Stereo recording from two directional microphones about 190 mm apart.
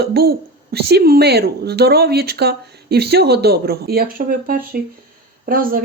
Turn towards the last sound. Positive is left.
turn(degrees=-45)  # may be behind; listen again after turning